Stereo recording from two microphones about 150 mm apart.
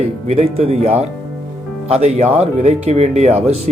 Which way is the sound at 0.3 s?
45° right (ahead or behind).